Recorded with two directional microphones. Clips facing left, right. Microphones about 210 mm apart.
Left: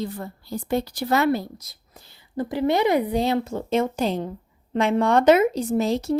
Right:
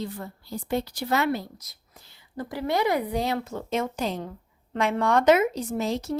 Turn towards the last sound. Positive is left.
turn(degrees=30)  # may be behind; listen again after turning